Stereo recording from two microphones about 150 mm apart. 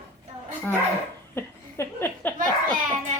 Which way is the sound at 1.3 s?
15° left (ahead or behind).